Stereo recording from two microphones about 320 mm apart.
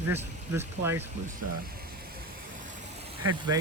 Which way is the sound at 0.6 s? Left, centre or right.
Centre.